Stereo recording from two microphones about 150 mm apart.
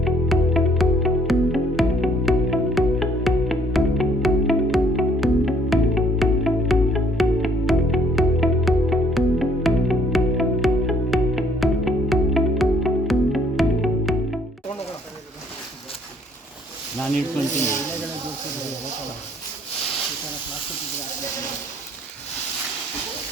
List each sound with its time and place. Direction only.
0.0 s music: centre (ahead or behind)